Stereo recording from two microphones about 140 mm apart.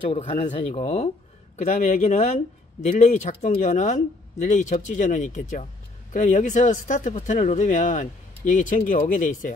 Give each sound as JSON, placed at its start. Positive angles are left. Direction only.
{"t": 0.1, "sound": "speech", "side_deg": 45}